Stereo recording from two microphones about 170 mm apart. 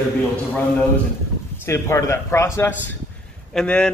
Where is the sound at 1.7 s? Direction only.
15° left (ahead or behind).